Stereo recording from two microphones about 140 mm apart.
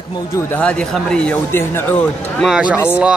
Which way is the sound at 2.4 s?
5° right (ahead or behind).